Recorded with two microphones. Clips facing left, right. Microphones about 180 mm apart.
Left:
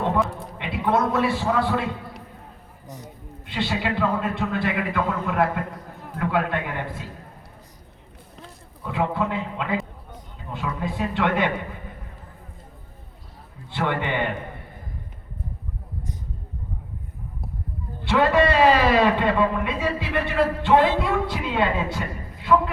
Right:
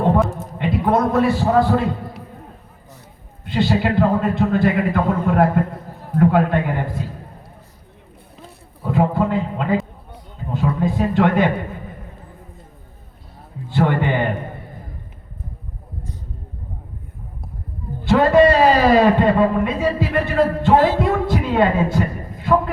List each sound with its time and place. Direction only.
0.3 s a man's voice: 45° right (ahead or behind)
3.4 s a man's voice: 45° right (ahead or behind)
8.8 s a sound: 40° right (ahead or behind)
13.7 s a man's voice: 40° right (ahead or behind)
18.0 s a man's voice: 40° right (ahead or behind)